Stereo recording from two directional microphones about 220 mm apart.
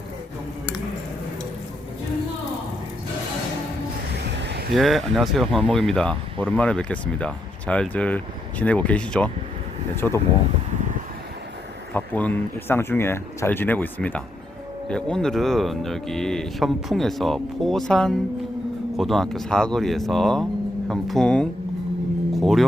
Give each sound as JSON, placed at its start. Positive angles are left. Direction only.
{"t": 4.2, "sound": "a sound", "side_deg": -50}
{"t": 4.7, "sound": "speech", "side_deg": 0}
{"t": 11.9, "sound": "speech", "side_deg": 5}